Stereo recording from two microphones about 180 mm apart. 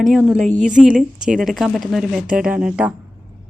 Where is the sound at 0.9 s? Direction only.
5° right (ahead or behind).